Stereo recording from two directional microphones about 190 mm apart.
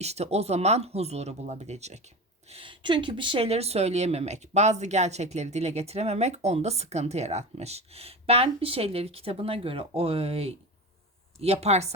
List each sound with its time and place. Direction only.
0.0 s speech: 35° right (ahead or behind)